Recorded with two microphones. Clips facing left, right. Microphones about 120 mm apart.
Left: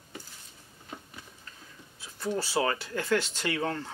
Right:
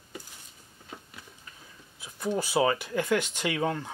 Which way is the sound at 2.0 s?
15° right (ahead or behind).